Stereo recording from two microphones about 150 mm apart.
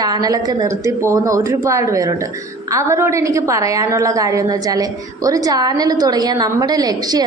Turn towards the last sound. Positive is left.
turn(degrees=-25)  # may be behind; listen again after turning